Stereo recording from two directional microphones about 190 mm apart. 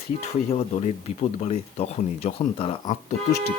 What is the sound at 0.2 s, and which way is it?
Speech, 35° left (ahead or behind).